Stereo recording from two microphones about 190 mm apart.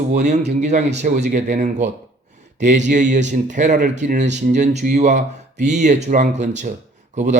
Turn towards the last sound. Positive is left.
turn(degrees=-40)  # may be behind; listen again after turning